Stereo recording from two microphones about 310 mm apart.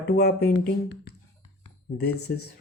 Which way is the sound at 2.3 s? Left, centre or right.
Left.